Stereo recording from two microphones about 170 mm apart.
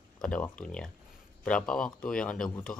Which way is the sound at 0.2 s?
5° left (ahead or behind).